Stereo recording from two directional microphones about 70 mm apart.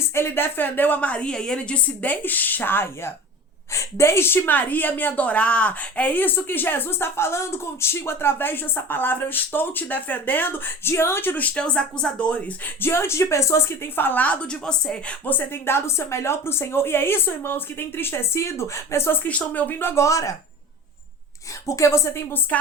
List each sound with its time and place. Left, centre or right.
0.1 s a woman's voice: left
11.5 s a woman's voice: centre; by 13.6 s left
13.9 s a woman's voice: left; by 15.1 s centre
15.2 s a woman's voice: left
19.2 s a woman's voice: left
19.9 s a woman's voice: left
21.7 s a woman's voice: left